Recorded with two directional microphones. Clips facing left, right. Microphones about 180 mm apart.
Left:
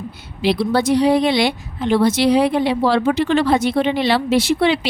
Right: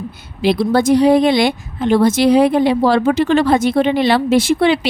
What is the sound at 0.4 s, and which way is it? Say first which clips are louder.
Speech: right 3 dB; 45° right (ahead or behind).